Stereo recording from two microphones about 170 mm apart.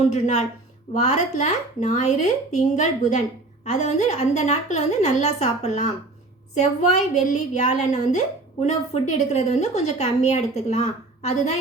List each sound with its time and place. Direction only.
0.1 s a woman's voice: 45° left (ahead or behind)